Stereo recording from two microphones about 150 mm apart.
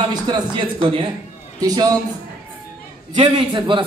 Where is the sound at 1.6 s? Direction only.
25° right (ahead or behind).